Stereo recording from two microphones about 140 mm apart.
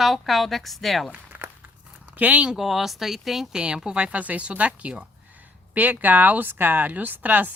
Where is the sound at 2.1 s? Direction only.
10° right (ahead or behind).